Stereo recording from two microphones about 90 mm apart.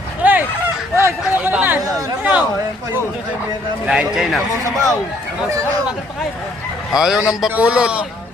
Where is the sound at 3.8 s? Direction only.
5° right (ahead or behind).